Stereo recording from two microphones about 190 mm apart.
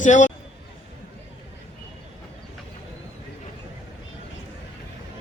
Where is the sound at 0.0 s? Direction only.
40° left (ahead or behind).